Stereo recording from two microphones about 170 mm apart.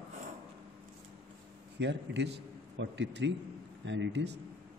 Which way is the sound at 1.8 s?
90° right.